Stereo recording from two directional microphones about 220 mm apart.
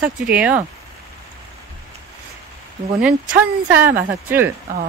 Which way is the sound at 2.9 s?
5° right (ahead or behind).